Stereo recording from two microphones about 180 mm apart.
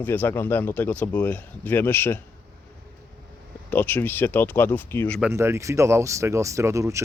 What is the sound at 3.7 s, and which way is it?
Speech, 10° left (ahead or behind).